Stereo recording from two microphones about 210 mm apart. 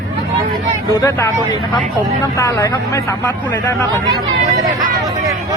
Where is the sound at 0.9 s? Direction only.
15° left (ahead or behind).